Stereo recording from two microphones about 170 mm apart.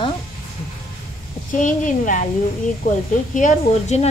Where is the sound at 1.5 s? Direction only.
50° left (ahead or behind).